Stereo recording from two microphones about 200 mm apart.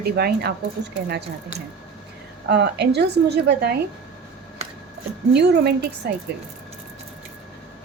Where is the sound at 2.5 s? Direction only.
55° right (ahead or behind).